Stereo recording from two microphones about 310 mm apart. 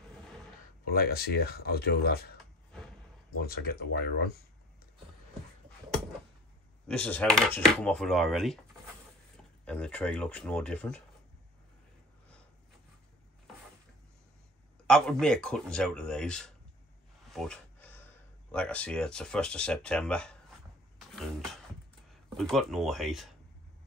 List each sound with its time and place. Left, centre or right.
0.9 s speech: left
3.3 s speech: left
6.9 s speech: centre
9.7 s speech: centre
14.9 s speech: centre